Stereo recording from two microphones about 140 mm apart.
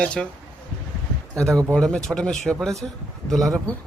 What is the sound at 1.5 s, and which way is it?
Speech, 20° right (ahead or behind).